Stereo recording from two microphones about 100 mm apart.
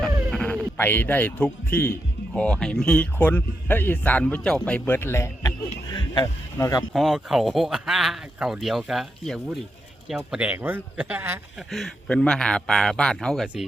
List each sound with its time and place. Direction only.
0.3 s speech: 10° left (ahead or behind)
4.9 s a sound: 25° left (ahead or behind); by 6.2 s 45° left (ahead or behind)
6.6 s speech: 40° left (ahead or behind)
6.9 s speech: 5° right (ahead or behind)
11.7 s speech: centre (ahead or behind)